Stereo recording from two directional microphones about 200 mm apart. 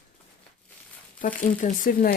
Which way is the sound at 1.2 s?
40° left (ahead or behind).